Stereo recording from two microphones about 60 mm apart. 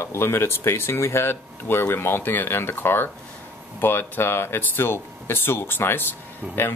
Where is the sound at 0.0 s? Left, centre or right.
Left.